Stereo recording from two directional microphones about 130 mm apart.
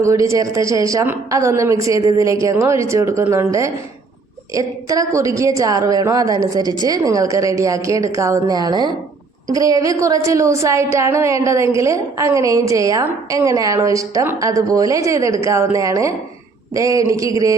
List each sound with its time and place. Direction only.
0.0 s a woman's voice: 25° right (ahead or behind)